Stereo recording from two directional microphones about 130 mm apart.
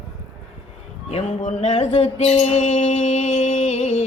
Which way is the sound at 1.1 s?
50° left (ahead or behind).